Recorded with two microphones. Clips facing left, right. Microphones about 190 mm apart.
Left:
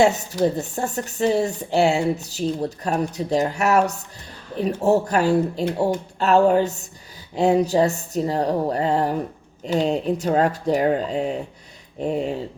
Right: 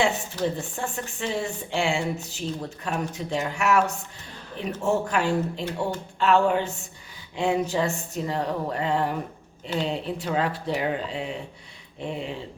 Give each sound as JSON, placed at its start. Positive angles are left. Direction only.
{"t": 0.4, "sound": "speech", "side_deg": 40}